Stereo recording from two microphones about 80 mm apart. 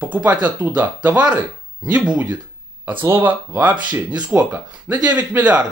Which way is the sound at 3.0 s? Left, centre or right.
Right.